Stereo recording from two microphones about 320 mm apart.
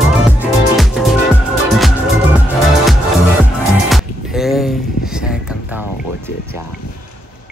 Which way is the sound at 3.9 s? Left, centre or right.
Centre.